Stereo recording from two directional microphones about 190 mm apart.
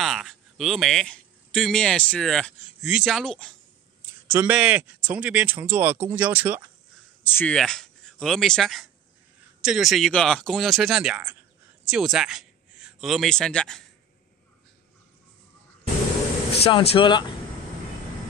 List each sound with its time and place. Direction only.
0.0 s speech: centre (ahead or behind)
4.3 s speech: 10° right (ahead or behind)
7.2 s speech: 10° left (ahead or behind)
16.6 s speech: 30° left (ahead or behind)